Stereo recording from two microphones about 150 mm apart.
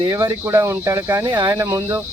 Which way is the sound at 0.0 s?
25° right (ahead or behind).